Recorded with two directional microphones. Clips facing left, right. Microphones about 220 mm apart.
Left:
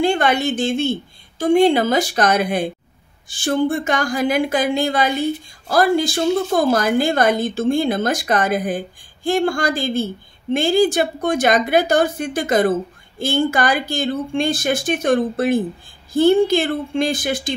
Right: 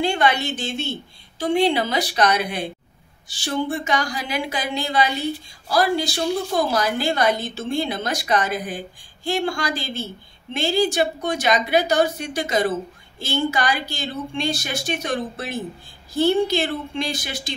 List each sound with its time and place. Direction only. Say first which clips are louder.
0.0 s a woman's voice: left 4 dB; 50° left (ahead or behind)